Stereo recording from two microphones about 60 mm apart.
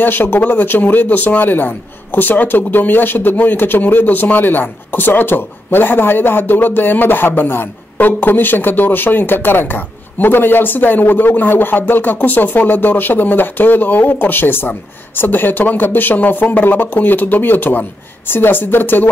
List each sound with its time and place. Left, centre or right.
0.0 s speech: left